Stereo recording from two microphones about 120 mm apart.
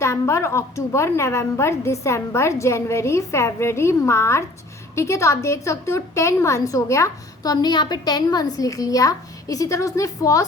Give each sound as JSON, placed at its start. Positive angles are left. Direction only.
{"t": 0.0, "sound": "a woman's voice", "side_deg": 25}